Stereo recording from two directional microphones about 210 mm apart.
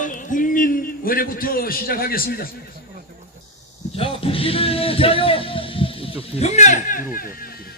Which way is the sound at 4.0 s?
25° left (ahead or behind).